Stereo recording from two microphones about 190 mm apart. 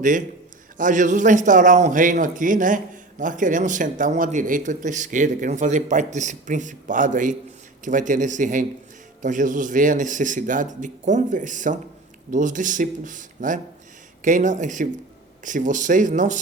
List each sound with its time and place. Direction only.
0.8 s a man's voice: 40° right (ahead or behind)